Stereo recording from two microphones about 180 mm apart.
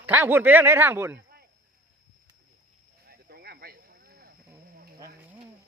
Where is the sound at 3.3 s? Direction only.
60° right (ahead or behind).